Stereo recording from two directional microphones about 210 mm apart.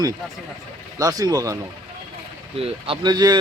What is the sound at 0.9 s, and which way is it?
Speech, 15° right (ahead or behind).